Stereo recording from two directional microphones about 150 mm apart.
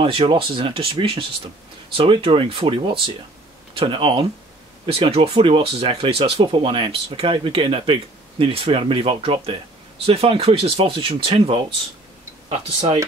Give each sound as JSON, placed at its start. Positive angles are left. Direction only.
{"t": 0.0, "sound": "speech", "side_deg": -35}